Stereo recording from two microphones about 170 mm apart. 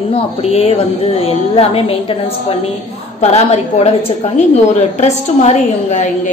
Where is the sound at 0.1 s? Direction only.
35° left (ahead or behind).